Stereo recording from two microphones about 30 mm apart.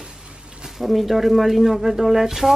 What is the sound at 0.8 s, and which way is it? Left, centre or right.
Speech, centre.